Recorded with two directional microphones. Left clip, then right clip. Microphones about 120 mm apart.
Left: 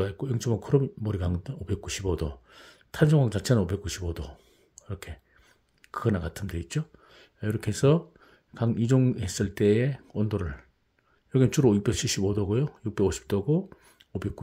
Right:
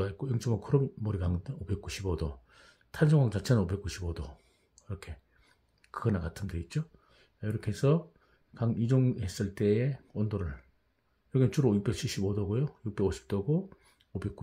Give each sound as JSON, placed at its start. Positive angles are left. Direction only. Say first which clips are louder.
{"t": 0.0, "sound": "speech", "louder": "left 5 dB", "side_deg": 30}